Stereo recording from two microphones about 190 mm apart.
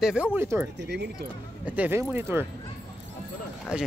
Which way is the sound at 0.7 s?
65° right (ahead or behind).